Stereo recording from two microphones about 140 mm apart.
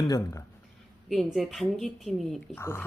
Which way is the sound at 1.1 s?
Centre (ahead or behind).